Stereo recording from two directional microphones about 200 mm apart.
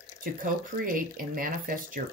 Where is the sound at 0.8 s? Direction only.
45° right (ahead or behind).